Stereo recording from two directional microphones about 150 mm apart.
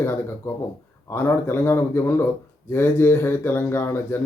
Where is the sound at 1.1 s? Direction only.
15° left (ahead or behind).